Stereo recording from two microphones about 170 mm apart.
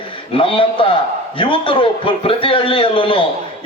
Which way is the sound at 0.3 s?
30° left (ahead or behind).